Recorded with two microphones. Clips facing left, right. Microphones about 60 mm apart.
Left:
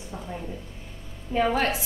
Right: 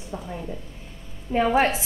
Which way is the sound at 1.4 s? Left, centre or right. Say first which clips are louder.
Right 4 dB; centre.